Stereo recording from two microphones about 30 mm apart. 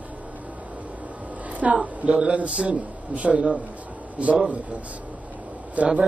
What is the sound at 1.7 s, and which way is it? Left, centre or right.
Speech, right.